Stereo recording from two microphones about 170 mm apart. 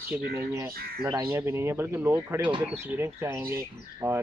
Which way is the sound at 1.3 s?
15° right (ahead or behind).